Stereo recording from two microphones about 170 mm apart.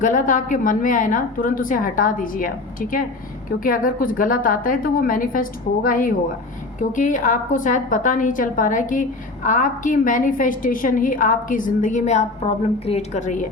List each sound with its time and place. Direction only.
0.0 s a woman's voice: 50° left (ahead or behind)